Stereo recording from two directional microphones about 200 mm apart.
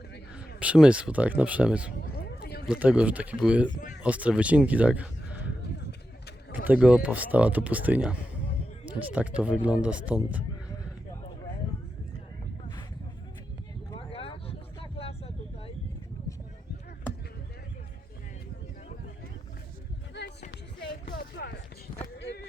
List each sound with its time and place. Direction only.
0.3 s speech: 5° right (ahead or behind)
2.1 s a sound: 50° left (ahead or behind)
2.6 s speech: 5° right (ahead or behind)
6.7 s speech: 5° right (ahead or behind)
9.1 s speech: 5° right (ahead or behind)
13.9 s vehicle: 30° left (ahead or behind)
20.2 s a sound: 55° left (ahead or behind)